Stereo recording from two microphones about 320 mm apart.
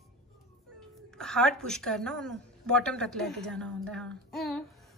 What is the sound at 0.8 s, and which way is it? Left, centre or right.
A woman's voice, centre.